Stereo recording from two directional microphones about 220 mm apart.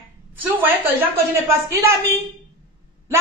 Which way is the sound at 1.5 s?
15° right (ahead or behind).